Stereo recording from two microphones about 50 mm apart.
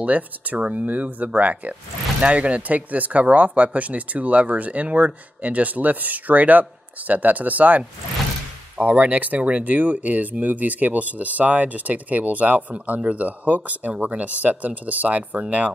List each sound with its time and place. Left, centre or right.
0.0 s speech: right